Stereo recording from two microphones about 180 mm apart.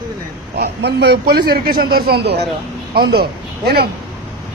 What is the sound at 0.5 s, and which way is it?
Speech, 65° right (ahead or behind).